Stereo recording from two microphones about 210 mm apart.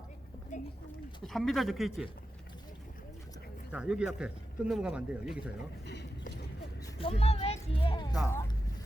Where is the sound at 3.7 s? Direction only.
5° right (ahead or behind).